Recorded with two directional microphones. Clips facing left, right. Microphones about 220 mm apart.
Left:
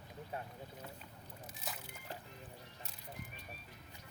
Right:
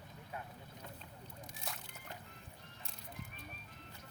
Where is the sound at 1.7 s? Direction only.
Centre (ahead or behind).